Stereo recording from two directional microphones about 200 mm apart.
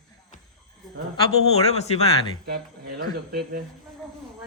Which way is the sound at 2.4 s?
50° right (ahead or behind).